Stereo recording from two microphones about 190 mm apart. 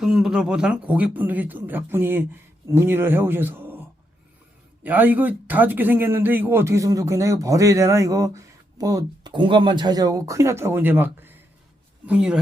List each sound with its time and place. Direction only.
0.0 s a man's voice: 5° right (ahead or behind)